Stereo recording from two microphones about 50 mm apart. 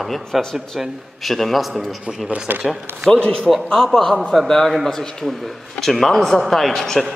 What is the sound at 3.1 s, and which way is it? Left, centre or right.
A man's voice, centre.